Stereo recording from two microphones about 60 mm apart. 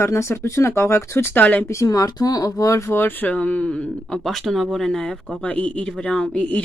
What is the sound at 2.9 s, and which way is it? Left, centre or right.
Speech, left.